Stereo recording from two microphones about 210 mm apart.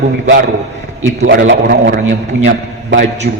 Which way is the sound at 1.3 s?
50° right (ahead or behind).